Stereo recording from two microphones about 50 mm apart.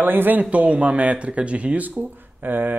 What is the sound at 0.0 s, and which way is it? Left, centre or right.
Speech, right.